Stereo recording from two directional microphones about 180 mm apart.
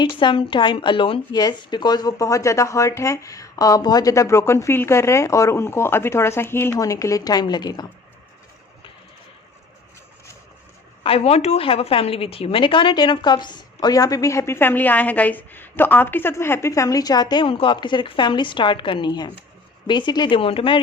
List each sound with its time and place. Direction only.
0.0 s speech: 25° left (ahead or behind)
11.0 s a woman's voice: 35° left (ahead or behind)